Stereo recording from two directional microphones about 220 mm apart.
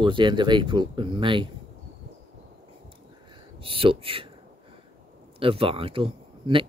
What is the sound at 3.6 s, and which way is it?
Speech, 25° right (ahead or behind).